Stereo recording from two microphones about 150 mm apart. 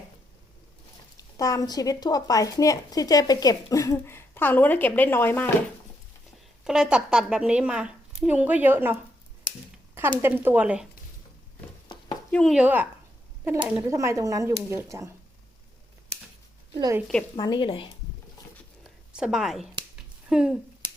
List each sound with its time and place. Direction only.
1.1 s speech: 25° left (ahead or behind)
6.7 s a woman's voice: 5° right (ahead or behind)
10.2 s speech: 15° right (ahead or behind)
12.3 s a woman's voice: 5° left (ahead or behind)
12.5 s speech: 10° right (ahead or behind)
17.3 s a woman's voice: 30° left (ahead or behind)
18.8 s a sound: 5° right (ahead or behind)
20.3 s a woman's voice: 5° right (ahead or behind)